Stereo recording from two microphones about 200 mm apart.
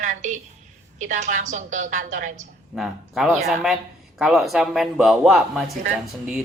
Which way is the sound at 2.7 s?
Centre (ahead or behind).